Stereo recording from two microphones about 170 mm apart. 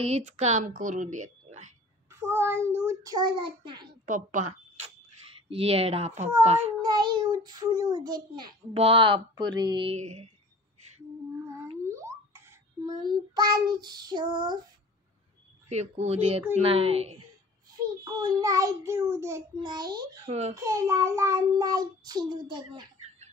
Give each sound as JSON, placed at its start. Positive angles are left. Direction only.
{"t": 0.0, "sound": "a woman's voice", "side_deg": -40}
{"t": 2.1, "sound": "child singing", "side_deg": -15}
{"t": 4.0, "sound": "speech", "side_deg": -50}
{"t": 6.8, "sound": "child singing", "side_deg": -25}
{"t": 9.9, "sound": "speech", "side_deg": -40}
{"t": 11.8, "sound": "a sound", "side_deg": -15}
{"t": 15.7, "sound": "speech", "side_deg": -40}
{"t": 18.0, "sound": "child singing", "side_deg": -20}